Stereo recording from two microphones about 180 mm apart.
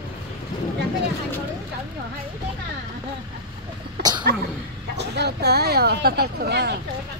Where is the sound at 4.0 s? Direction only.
65° right (ahead or behind).